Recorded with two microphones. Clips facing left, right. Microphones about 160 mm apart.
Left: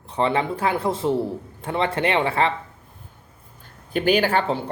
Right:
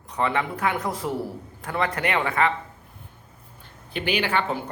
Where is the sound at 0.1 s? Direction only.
30° left (ahead or behind).